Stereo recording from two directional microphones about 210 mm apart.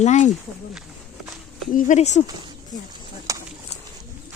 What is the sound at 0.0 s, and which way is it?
Speech, 35° left (ahead or behind).